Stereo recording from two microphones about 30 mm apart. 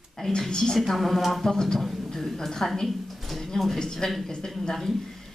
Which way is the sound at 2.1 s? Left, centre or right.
Centre.